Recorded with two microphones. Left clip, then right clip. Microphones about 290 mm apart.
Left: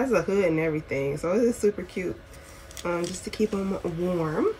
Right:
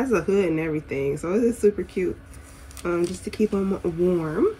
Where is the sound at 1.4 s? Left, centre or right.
Left.